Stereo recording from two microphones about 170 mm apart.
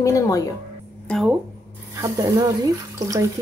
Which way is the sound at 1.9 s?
20° right (ahead or behind).